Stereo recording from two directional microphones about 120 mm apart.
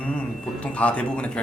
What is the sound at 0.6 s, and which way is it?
Speech, 10° left (ahead or behind).